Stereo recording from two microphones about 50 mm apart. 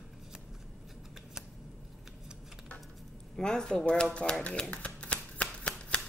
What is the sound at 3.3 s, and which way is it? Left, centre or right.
A woman's voice, centre.